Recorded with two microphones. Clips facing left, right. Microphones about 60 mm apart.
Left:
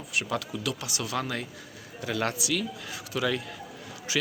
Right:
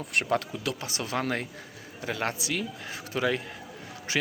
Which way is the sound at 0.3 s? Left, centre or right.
Right.